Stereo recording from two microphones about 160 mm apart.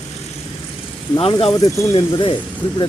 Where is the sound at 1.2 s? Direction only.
35° left (ahead or behind).